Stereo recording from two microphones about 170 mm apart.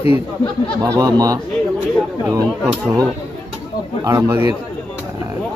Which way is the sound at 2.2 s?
20° right (ahead or behind).